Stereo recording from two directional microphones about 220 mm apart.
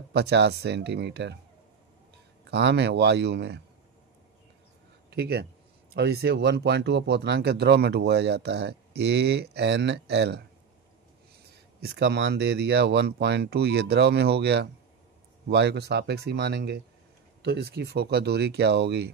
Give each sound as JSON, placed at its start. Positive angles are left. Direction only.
{"t": 0.1, "sound": "speech", "side_deg": -50}
{"t": 2.5, "sound": "speech", "side_deg": -50}
{"t": 5.1, "sound": "speech", "side_deg": -45}
{"t": 11.8, "sound": "speech", "side_deg": -45}